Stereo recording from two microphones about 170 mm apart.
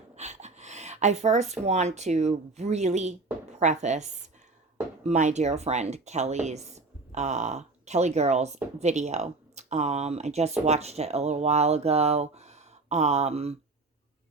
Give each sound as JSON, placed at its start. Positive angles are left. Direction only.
{"t": 0.2, "sound": "speech", "side_deg": -40}
{"t": 5.1, "sound": "a woman's voice", "side_deg": -45}